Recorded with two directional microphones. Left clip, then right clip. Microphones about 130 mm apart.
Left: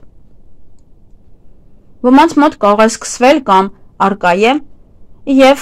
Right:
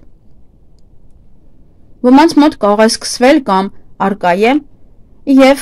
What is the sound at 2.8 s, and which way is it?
Speech, 40° right (ahead or behind).